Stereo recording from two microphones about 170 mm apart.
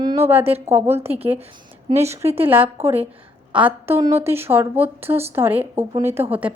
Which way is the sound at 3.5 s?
10° right (ahead or behind).